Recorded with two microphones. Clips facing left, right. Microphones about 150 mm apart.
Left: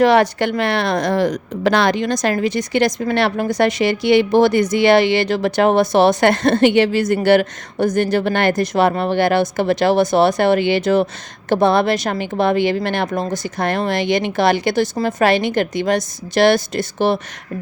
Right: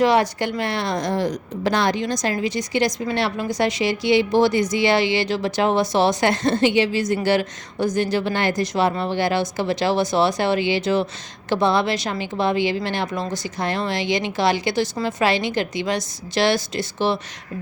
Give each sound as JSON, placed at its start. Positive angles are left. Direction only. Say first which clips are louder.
{"t": 0.0, "sound": "a woman's voice", "louder": "left 4 dB", "side_deg": 65}